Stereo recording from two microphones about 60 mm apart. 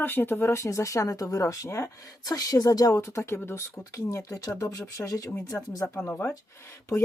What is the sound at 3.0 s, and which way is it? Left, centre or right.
Speech, left.